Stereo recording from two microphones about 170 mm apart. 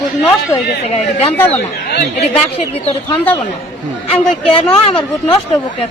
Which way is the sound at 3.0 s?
10° left (ahead or behind).